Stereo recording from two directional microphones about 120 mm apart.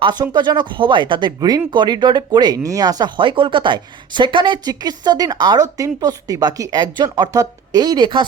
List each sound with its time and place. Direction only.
0.0 s speech: 35° right (ahead or behind)